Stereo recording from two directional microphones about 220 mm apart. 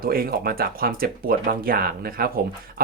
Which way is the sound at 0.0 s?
45° right (ahead or behind).